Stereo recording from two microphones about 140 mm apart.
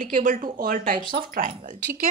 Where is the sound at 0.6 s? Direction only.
85° right.